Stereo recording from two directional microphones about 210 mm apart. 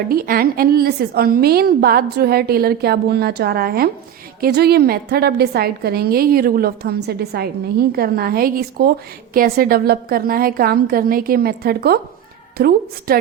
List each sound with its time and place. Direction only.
0.1 s a woman's voice: 45° right (ahead or behind)